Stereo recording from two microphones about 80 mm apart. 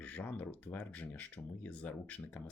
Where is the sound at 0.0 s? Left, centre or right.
Centre.